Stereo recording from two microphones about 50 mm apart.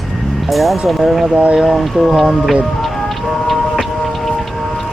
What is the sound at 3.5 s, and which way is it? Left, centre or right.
Music, centre.